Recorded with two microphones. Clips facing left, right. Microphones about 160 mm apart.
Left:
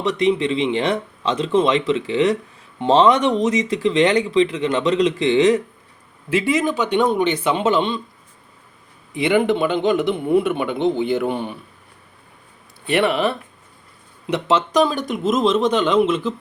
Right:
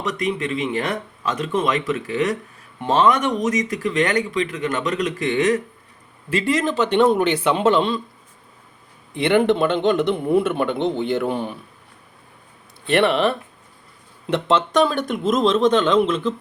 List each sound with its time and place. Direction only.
0.0 s speech: 25° left (ahead or behind)
6.3 s a man's voice: 5° left (ahead or behind)
7.1 s a man's voice: 5° right (ahead or behind)
9.1 s a man's voice: 5° left (ahead or behind)
12.8 s a man's voice: centre (ahead or behind)